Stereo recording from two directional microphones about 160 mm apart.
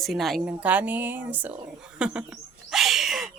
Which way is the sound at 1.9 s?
5° right (ahead or behind).